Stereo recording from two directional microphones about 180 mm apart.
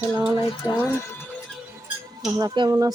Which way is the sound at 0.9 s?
15° left (ahead or behind).